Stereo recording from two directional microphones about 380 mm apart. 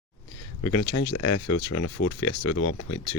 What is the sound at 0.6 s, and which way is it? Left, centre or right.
Speech, left.